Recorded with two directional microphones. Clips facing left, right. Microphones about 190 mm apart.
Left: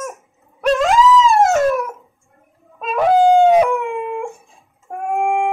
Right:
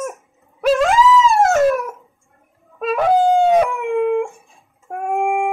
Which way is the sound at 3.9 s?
55° right (ahead or behind).